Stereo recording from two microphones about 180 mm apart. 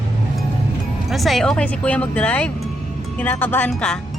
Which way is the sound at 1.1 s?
Centre (ahead or behind).